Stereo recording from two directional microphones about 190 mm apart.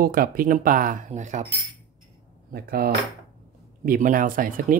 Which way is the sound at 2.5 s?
55° right (ahead or behind).